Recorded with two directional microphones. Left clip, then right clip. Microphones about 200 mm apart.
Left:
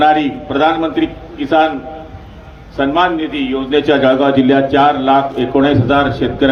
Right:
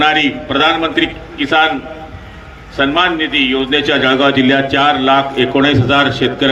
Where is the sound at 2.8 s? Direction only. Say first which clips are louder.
Right 1 dB; 40° left (ahead or behind).